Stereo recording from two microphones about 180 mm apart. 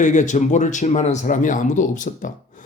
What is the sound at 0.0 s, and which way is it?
A man's voice, 45° left (ahead or behind).